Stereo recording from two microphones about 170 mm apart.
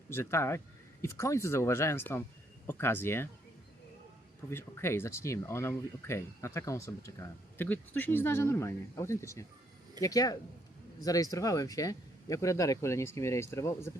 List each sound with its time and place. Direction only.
0.1 s speech: 15° left (ahead or behind)
4.5 s speech: 15° left (ahead or behind)